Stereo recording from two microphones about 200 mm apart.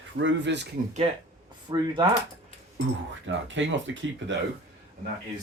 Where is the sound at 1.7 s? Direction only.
25° right (ahead or behind).